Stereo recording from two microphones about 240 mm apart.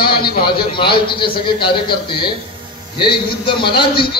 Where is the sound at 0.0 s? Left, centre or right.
Left.